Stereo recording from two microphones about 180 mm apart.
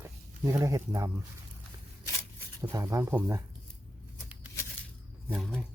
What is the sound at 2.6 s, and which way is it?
Speech, 15° right (ahead or behind).